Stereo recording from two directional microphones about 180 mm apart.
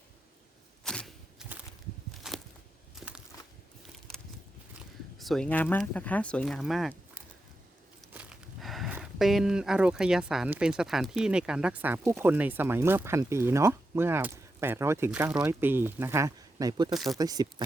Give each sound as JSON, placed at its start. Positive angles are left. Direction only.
{"t": 0.9, "sound": "a sound", "side_deg": 0}
{"t": 2.3, "sound": "walk", "side_deg": -5}
{"t": 5.2, "sound": "speech", "side_deg": 5}